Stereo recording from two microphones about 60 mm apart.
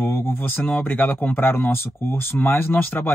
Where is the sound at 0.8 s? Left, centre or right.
Left.